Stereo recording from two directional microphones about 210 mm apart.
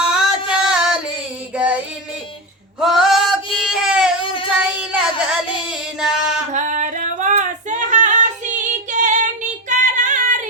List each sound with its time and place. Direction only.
0.0 s music: 5° right (ahead or behind)
1.5 s child singing: 5° right (ahead or behind)
2.8 s female singing: centre (ahead or behind)
4.8 s child singing: 5° right (ahead or behind)
6.0 s music: 5° right (ahead or behind)
6.5 s female singing: 35° right (ahead or behind)